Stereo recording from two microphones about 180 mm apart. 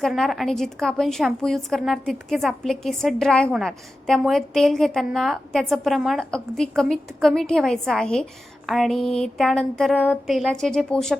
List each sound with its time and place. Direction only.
0.0 s a woman's voice: centre (ahead or behind)